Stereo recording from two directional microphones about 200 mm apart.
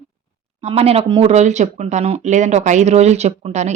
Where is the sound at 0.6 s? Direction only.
30° right (ahead or behind).